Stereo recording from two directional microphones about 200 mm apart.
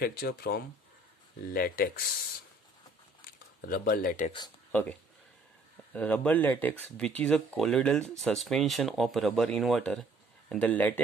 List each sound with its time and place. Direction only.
0.0 s speech: 50° left (ahead or behind)
3.6 s speech: 45° left (ahead or behind)
5.9 s speech: 5° left (ahead or behind)